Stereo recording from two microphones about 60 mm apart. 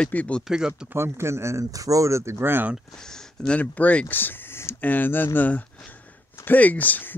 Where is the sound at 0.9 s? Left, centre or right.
Right.